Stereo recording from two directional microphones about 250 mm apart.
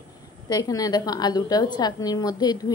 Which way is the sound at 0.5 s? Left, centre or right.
Centre.